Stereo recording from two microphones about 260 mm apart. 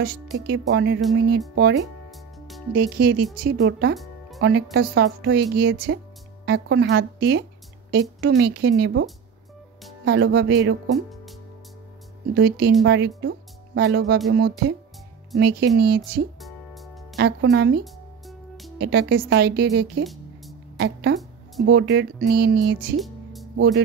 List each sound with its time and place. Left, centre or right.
0.0 s speech: right
2.0 s music: centre
2.7 s speech: right
3.9 s music: centre
4.4 s speech: right
10.0 s speech: right
12.4 s speech: right
16.3 s music: centre
17.2 s speech: right
17.8 s music: centre
18.8 s a woman's voice: right
22.9 s music: centre